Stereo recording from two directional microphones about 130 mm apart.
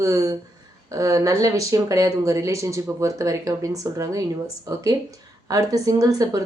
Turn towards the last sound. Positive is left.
turn(degrees=-30)  # may be behind; listen again after turning